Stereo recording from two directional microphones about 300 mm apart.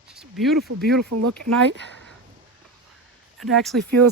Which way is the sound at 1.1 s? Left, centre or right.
Right.